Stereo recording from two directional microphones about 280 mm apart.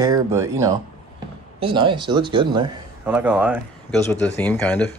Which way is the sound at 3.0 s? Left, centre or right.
Centre.